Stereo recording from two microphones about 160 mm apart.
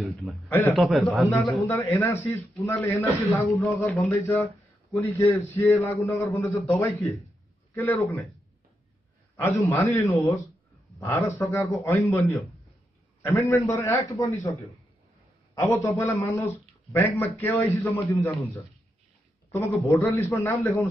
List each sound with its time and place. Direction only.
0.1 s a man's voice: centre (ahead or behind)
0.5 s a man's voice: 15° left (ahead or behind)
0.7 s a man's voice: centre (ahead or behind)
1.7 s a man's voice: 15° left (ahead or behind)
3.3 s a man's voice: centre (ahead or behind)
3.5 s a man's voice: 15° left (ahead or behind)
9.4 s a man's voice: 15° left (ahead or behind)
13.2 s a man's voice: 15° left (ahead or behind)
19.5 s a man's voice: 15° left (ahead or behind)